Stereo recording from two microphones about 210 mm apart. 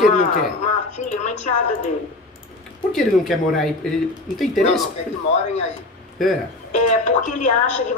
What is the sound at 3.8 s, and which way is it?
Speech, 5° left (ahead or behind).